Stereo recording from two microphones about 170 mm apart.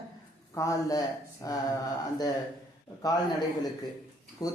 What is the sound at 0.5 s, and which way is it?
Speech, 20° left (ahead or behind).